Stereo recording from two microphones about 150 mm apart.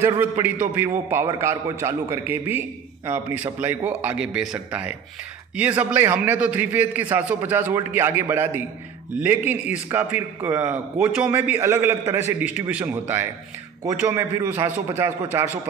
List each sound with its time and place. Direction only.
0.0 s a man's voice: 15° right (ahead or behind)